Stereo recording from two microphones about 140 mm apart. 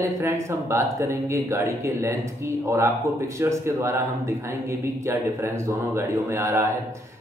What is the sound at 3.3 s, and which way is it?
Speech, 20° right (ahead or behind).